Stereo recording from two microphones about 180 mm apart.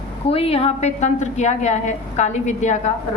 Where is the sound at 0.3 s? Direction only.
35° left (ahead or behind).